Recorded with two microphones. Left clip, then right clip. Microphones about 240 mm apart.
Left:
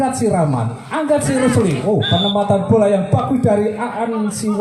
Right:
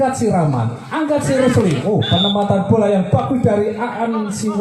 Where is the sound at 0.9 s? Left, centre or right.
Left.